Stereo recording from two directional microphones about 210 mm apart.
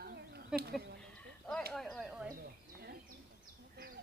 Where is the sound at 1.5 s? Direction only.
5° left (ahead or behind).